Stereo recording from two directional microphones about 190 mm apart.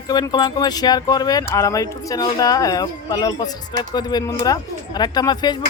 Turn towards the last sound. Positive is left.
turn(degrees=20)  # may be behind; listen again after turning